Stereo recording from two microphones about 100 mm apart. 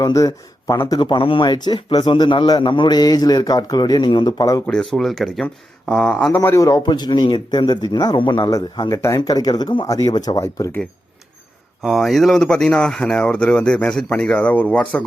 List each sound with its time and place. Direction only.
0.0 s speech: 35° left (ahead or behind)
0.9 s a man's voice: 50° left (ahead or behind)
4.6 s speech: 5° left (ahead or behind)
6.3 s a man's voice: 30° left (ahead or behind)
9.3 s speech: 45° left (ahead or behind)
11.8 s speech: centre (ahead or behind)